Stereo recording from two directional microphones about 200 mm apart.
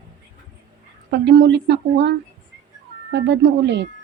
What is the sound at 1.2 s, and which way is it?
Speech, 60° right (ahead or behind).